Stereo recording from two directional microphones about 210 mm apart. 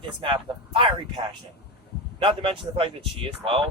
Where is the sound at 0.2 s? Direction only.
25° right (ahead or behind).